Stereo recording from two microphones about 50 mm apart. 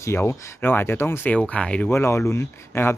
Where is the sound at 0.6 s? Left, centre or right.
Left.